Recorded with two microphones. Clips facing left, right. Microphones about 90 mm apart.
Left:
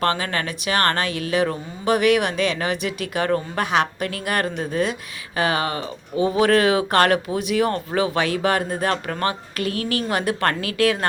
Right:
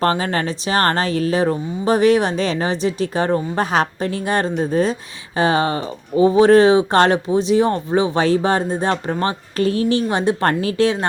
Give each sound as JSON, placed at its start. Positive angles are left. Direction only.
{"t": 0.0, "sound": "speech", "side_deg": -30}